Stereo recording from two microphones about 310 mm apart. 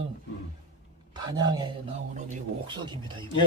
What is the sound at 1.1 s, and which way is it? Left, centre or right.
Speech, centre.